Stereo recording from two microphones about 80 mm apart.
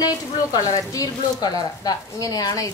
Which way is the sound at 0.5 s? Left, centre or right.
Left.